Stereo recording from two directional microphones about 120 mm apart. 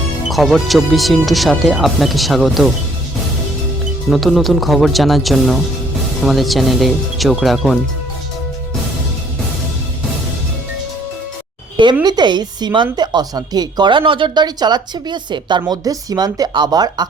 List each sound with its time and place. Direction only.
0.3 s speech: centre (ahead or behind)
4.1 s speech: centre (ahead or behind)
12.0 s a woman's voice: 35° right (ahead or behind)